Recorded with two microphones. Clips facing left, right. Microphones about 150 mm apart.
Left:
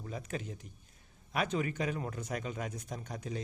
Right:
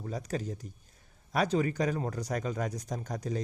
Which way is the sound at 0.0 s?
35° right (ahead or behind).